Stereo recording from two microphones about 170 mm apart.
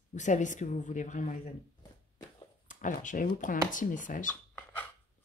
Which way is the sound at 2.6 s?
50° left (ahead or behind).